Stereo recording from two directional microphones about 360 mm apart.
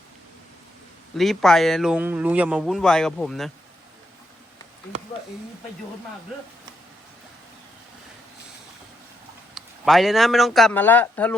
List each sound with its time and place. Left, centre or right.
1.1 s a man's voice: centre
9.6 s a man's voice: centre